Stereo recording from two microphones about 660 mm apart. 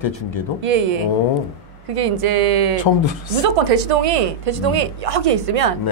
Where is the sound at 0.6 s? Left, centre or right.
Right.